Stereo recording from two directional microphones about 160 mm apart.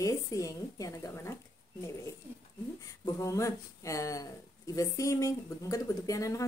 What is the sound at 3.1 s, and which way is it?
A woman's voice, 20° left (ahead or behind).